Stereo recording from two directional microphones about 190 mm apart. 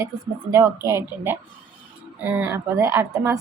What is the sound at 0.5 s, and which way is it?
A woman's voice, 15° right (ahead or behind).